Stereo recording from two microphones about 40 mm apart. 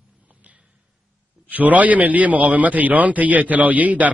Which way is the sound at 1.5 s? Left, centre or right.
Right.